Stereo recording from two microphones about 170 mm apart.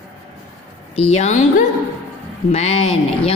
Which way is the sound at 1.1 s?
40° left (ahead or behind).